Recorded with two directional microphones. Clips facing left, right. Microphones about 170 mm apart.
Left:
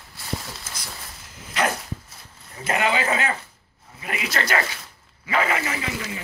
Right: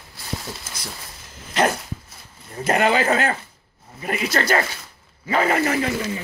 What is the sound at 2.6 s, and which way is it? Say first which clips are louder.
Speech: right 4 dB; 45° right (ahead or behind).